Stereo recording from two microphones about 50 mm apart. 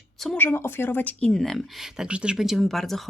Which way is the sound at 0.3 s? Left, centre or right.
Left.